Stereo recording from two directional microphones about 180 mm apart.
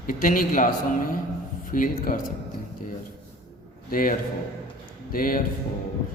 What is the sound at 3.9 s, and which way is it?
A man's voice, 50° left (ahead or behind).